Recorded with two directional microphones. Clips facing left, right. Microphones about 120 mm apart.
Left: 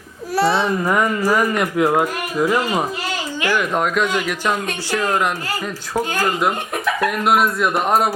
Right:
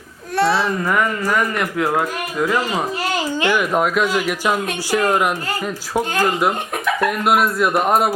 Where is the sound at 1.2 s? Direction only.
10° left (ahead or behind).